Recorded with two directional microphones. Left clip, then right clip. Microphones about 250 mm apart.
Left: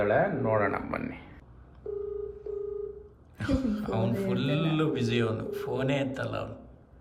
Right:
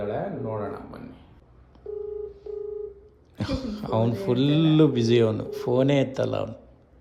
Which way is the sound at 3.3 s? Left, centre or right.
Centre.